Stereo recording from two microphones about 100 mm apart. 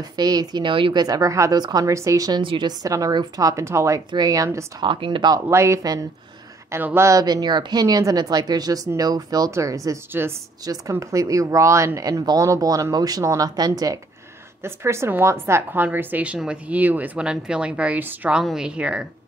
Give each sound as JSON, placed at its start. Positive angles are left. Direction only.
{"t": 0.1, "sound": "speech", "side_deg": -40}
{"t": 1.0, "sound": "speech", "side_deg": -35}
{"t": 2.4, "sound": "speech", "side_deg": -55}
{"t": 2.8, "sound": "speech", "side_deg": -35}
{"t": 4.7, "sound": "speech", "side_deg": -55}
{"t": 5.5, "sound": "speech", "side_deg": -30}
{"t": 10.2, "sound": "speech", "side_deg": -20}
{"t": 10.6, "sound": "speech", "side_deg": -35}
{"t": 14.6, "sound": "a woman's voice", "side_deg": -25}
{"t": 18.4, "sound": "a woman's voice", "side_deg": -5}